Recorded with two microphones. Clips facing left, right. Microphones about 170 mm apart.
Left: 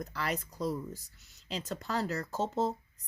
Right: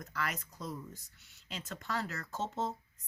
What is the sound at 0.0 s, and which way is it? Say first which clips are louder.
Speech: left 4 dB; 30° left (ahead or behind).